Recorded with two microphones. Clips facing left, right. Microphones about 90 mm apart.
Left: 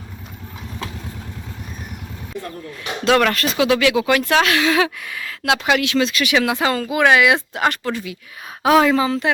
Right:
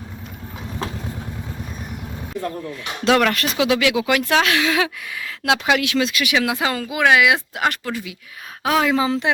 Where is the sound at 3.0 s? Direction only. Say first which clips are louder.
Left 1 dB; 10° right (ahead or behind).